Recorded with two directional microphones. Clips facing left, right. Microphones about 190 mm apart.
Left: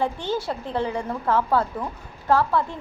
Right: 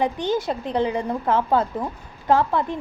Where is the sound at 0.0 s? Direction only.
15° right (ahead or behind).